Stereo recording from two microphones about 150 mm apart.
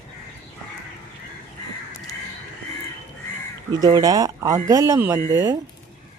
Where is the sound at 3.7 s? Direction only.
25° right (ahead or behind).